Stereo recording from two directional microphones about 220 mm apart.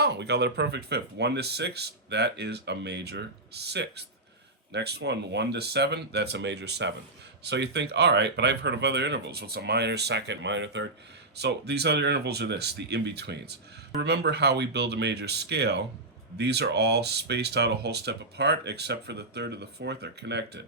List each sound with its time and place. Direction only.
0.0 s speech: 50° right (ahead or behind)